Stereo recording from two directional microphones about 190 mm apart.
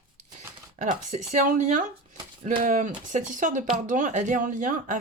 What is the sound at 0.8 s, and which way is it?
Speech, 40° right (ahead or behind).